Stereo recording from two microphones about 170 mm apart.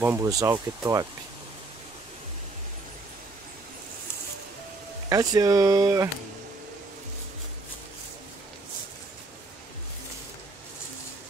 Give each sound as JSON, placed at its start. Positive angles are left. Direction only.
{"t": 0.0, "sound": "speech", "side_deg": -15}
{"t": 5.1, "sound": "speech", "side_deg": -20}